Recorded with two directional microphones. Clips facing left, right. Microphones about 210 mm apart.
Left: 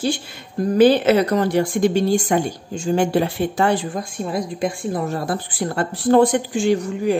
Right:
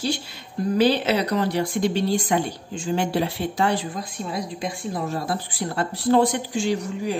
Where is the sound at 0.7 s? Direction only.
50° left (ahead or behind).